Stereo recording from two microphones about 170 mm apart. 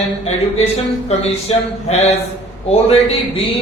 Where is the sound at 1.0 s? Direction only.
35° left (ahead or behind).